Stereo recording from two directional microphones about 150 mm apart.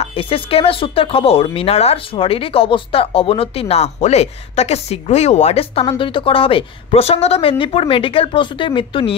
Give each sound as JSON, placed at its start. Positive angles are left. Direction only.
{"t": 0.0, "sound": "speech", "side_deg": 35}